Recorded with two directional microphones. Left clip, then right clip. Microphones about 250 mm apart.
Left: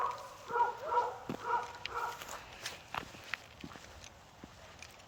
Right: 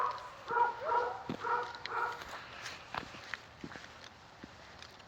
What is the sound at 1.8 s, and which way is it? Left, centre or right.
Walk, centre.